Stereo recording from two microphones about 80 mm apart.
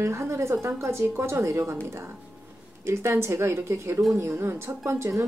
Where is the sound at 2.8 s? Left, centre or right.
Right.